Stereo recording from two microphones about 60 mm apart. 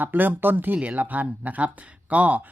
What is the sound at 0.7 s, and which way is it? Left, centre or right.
Speech, right.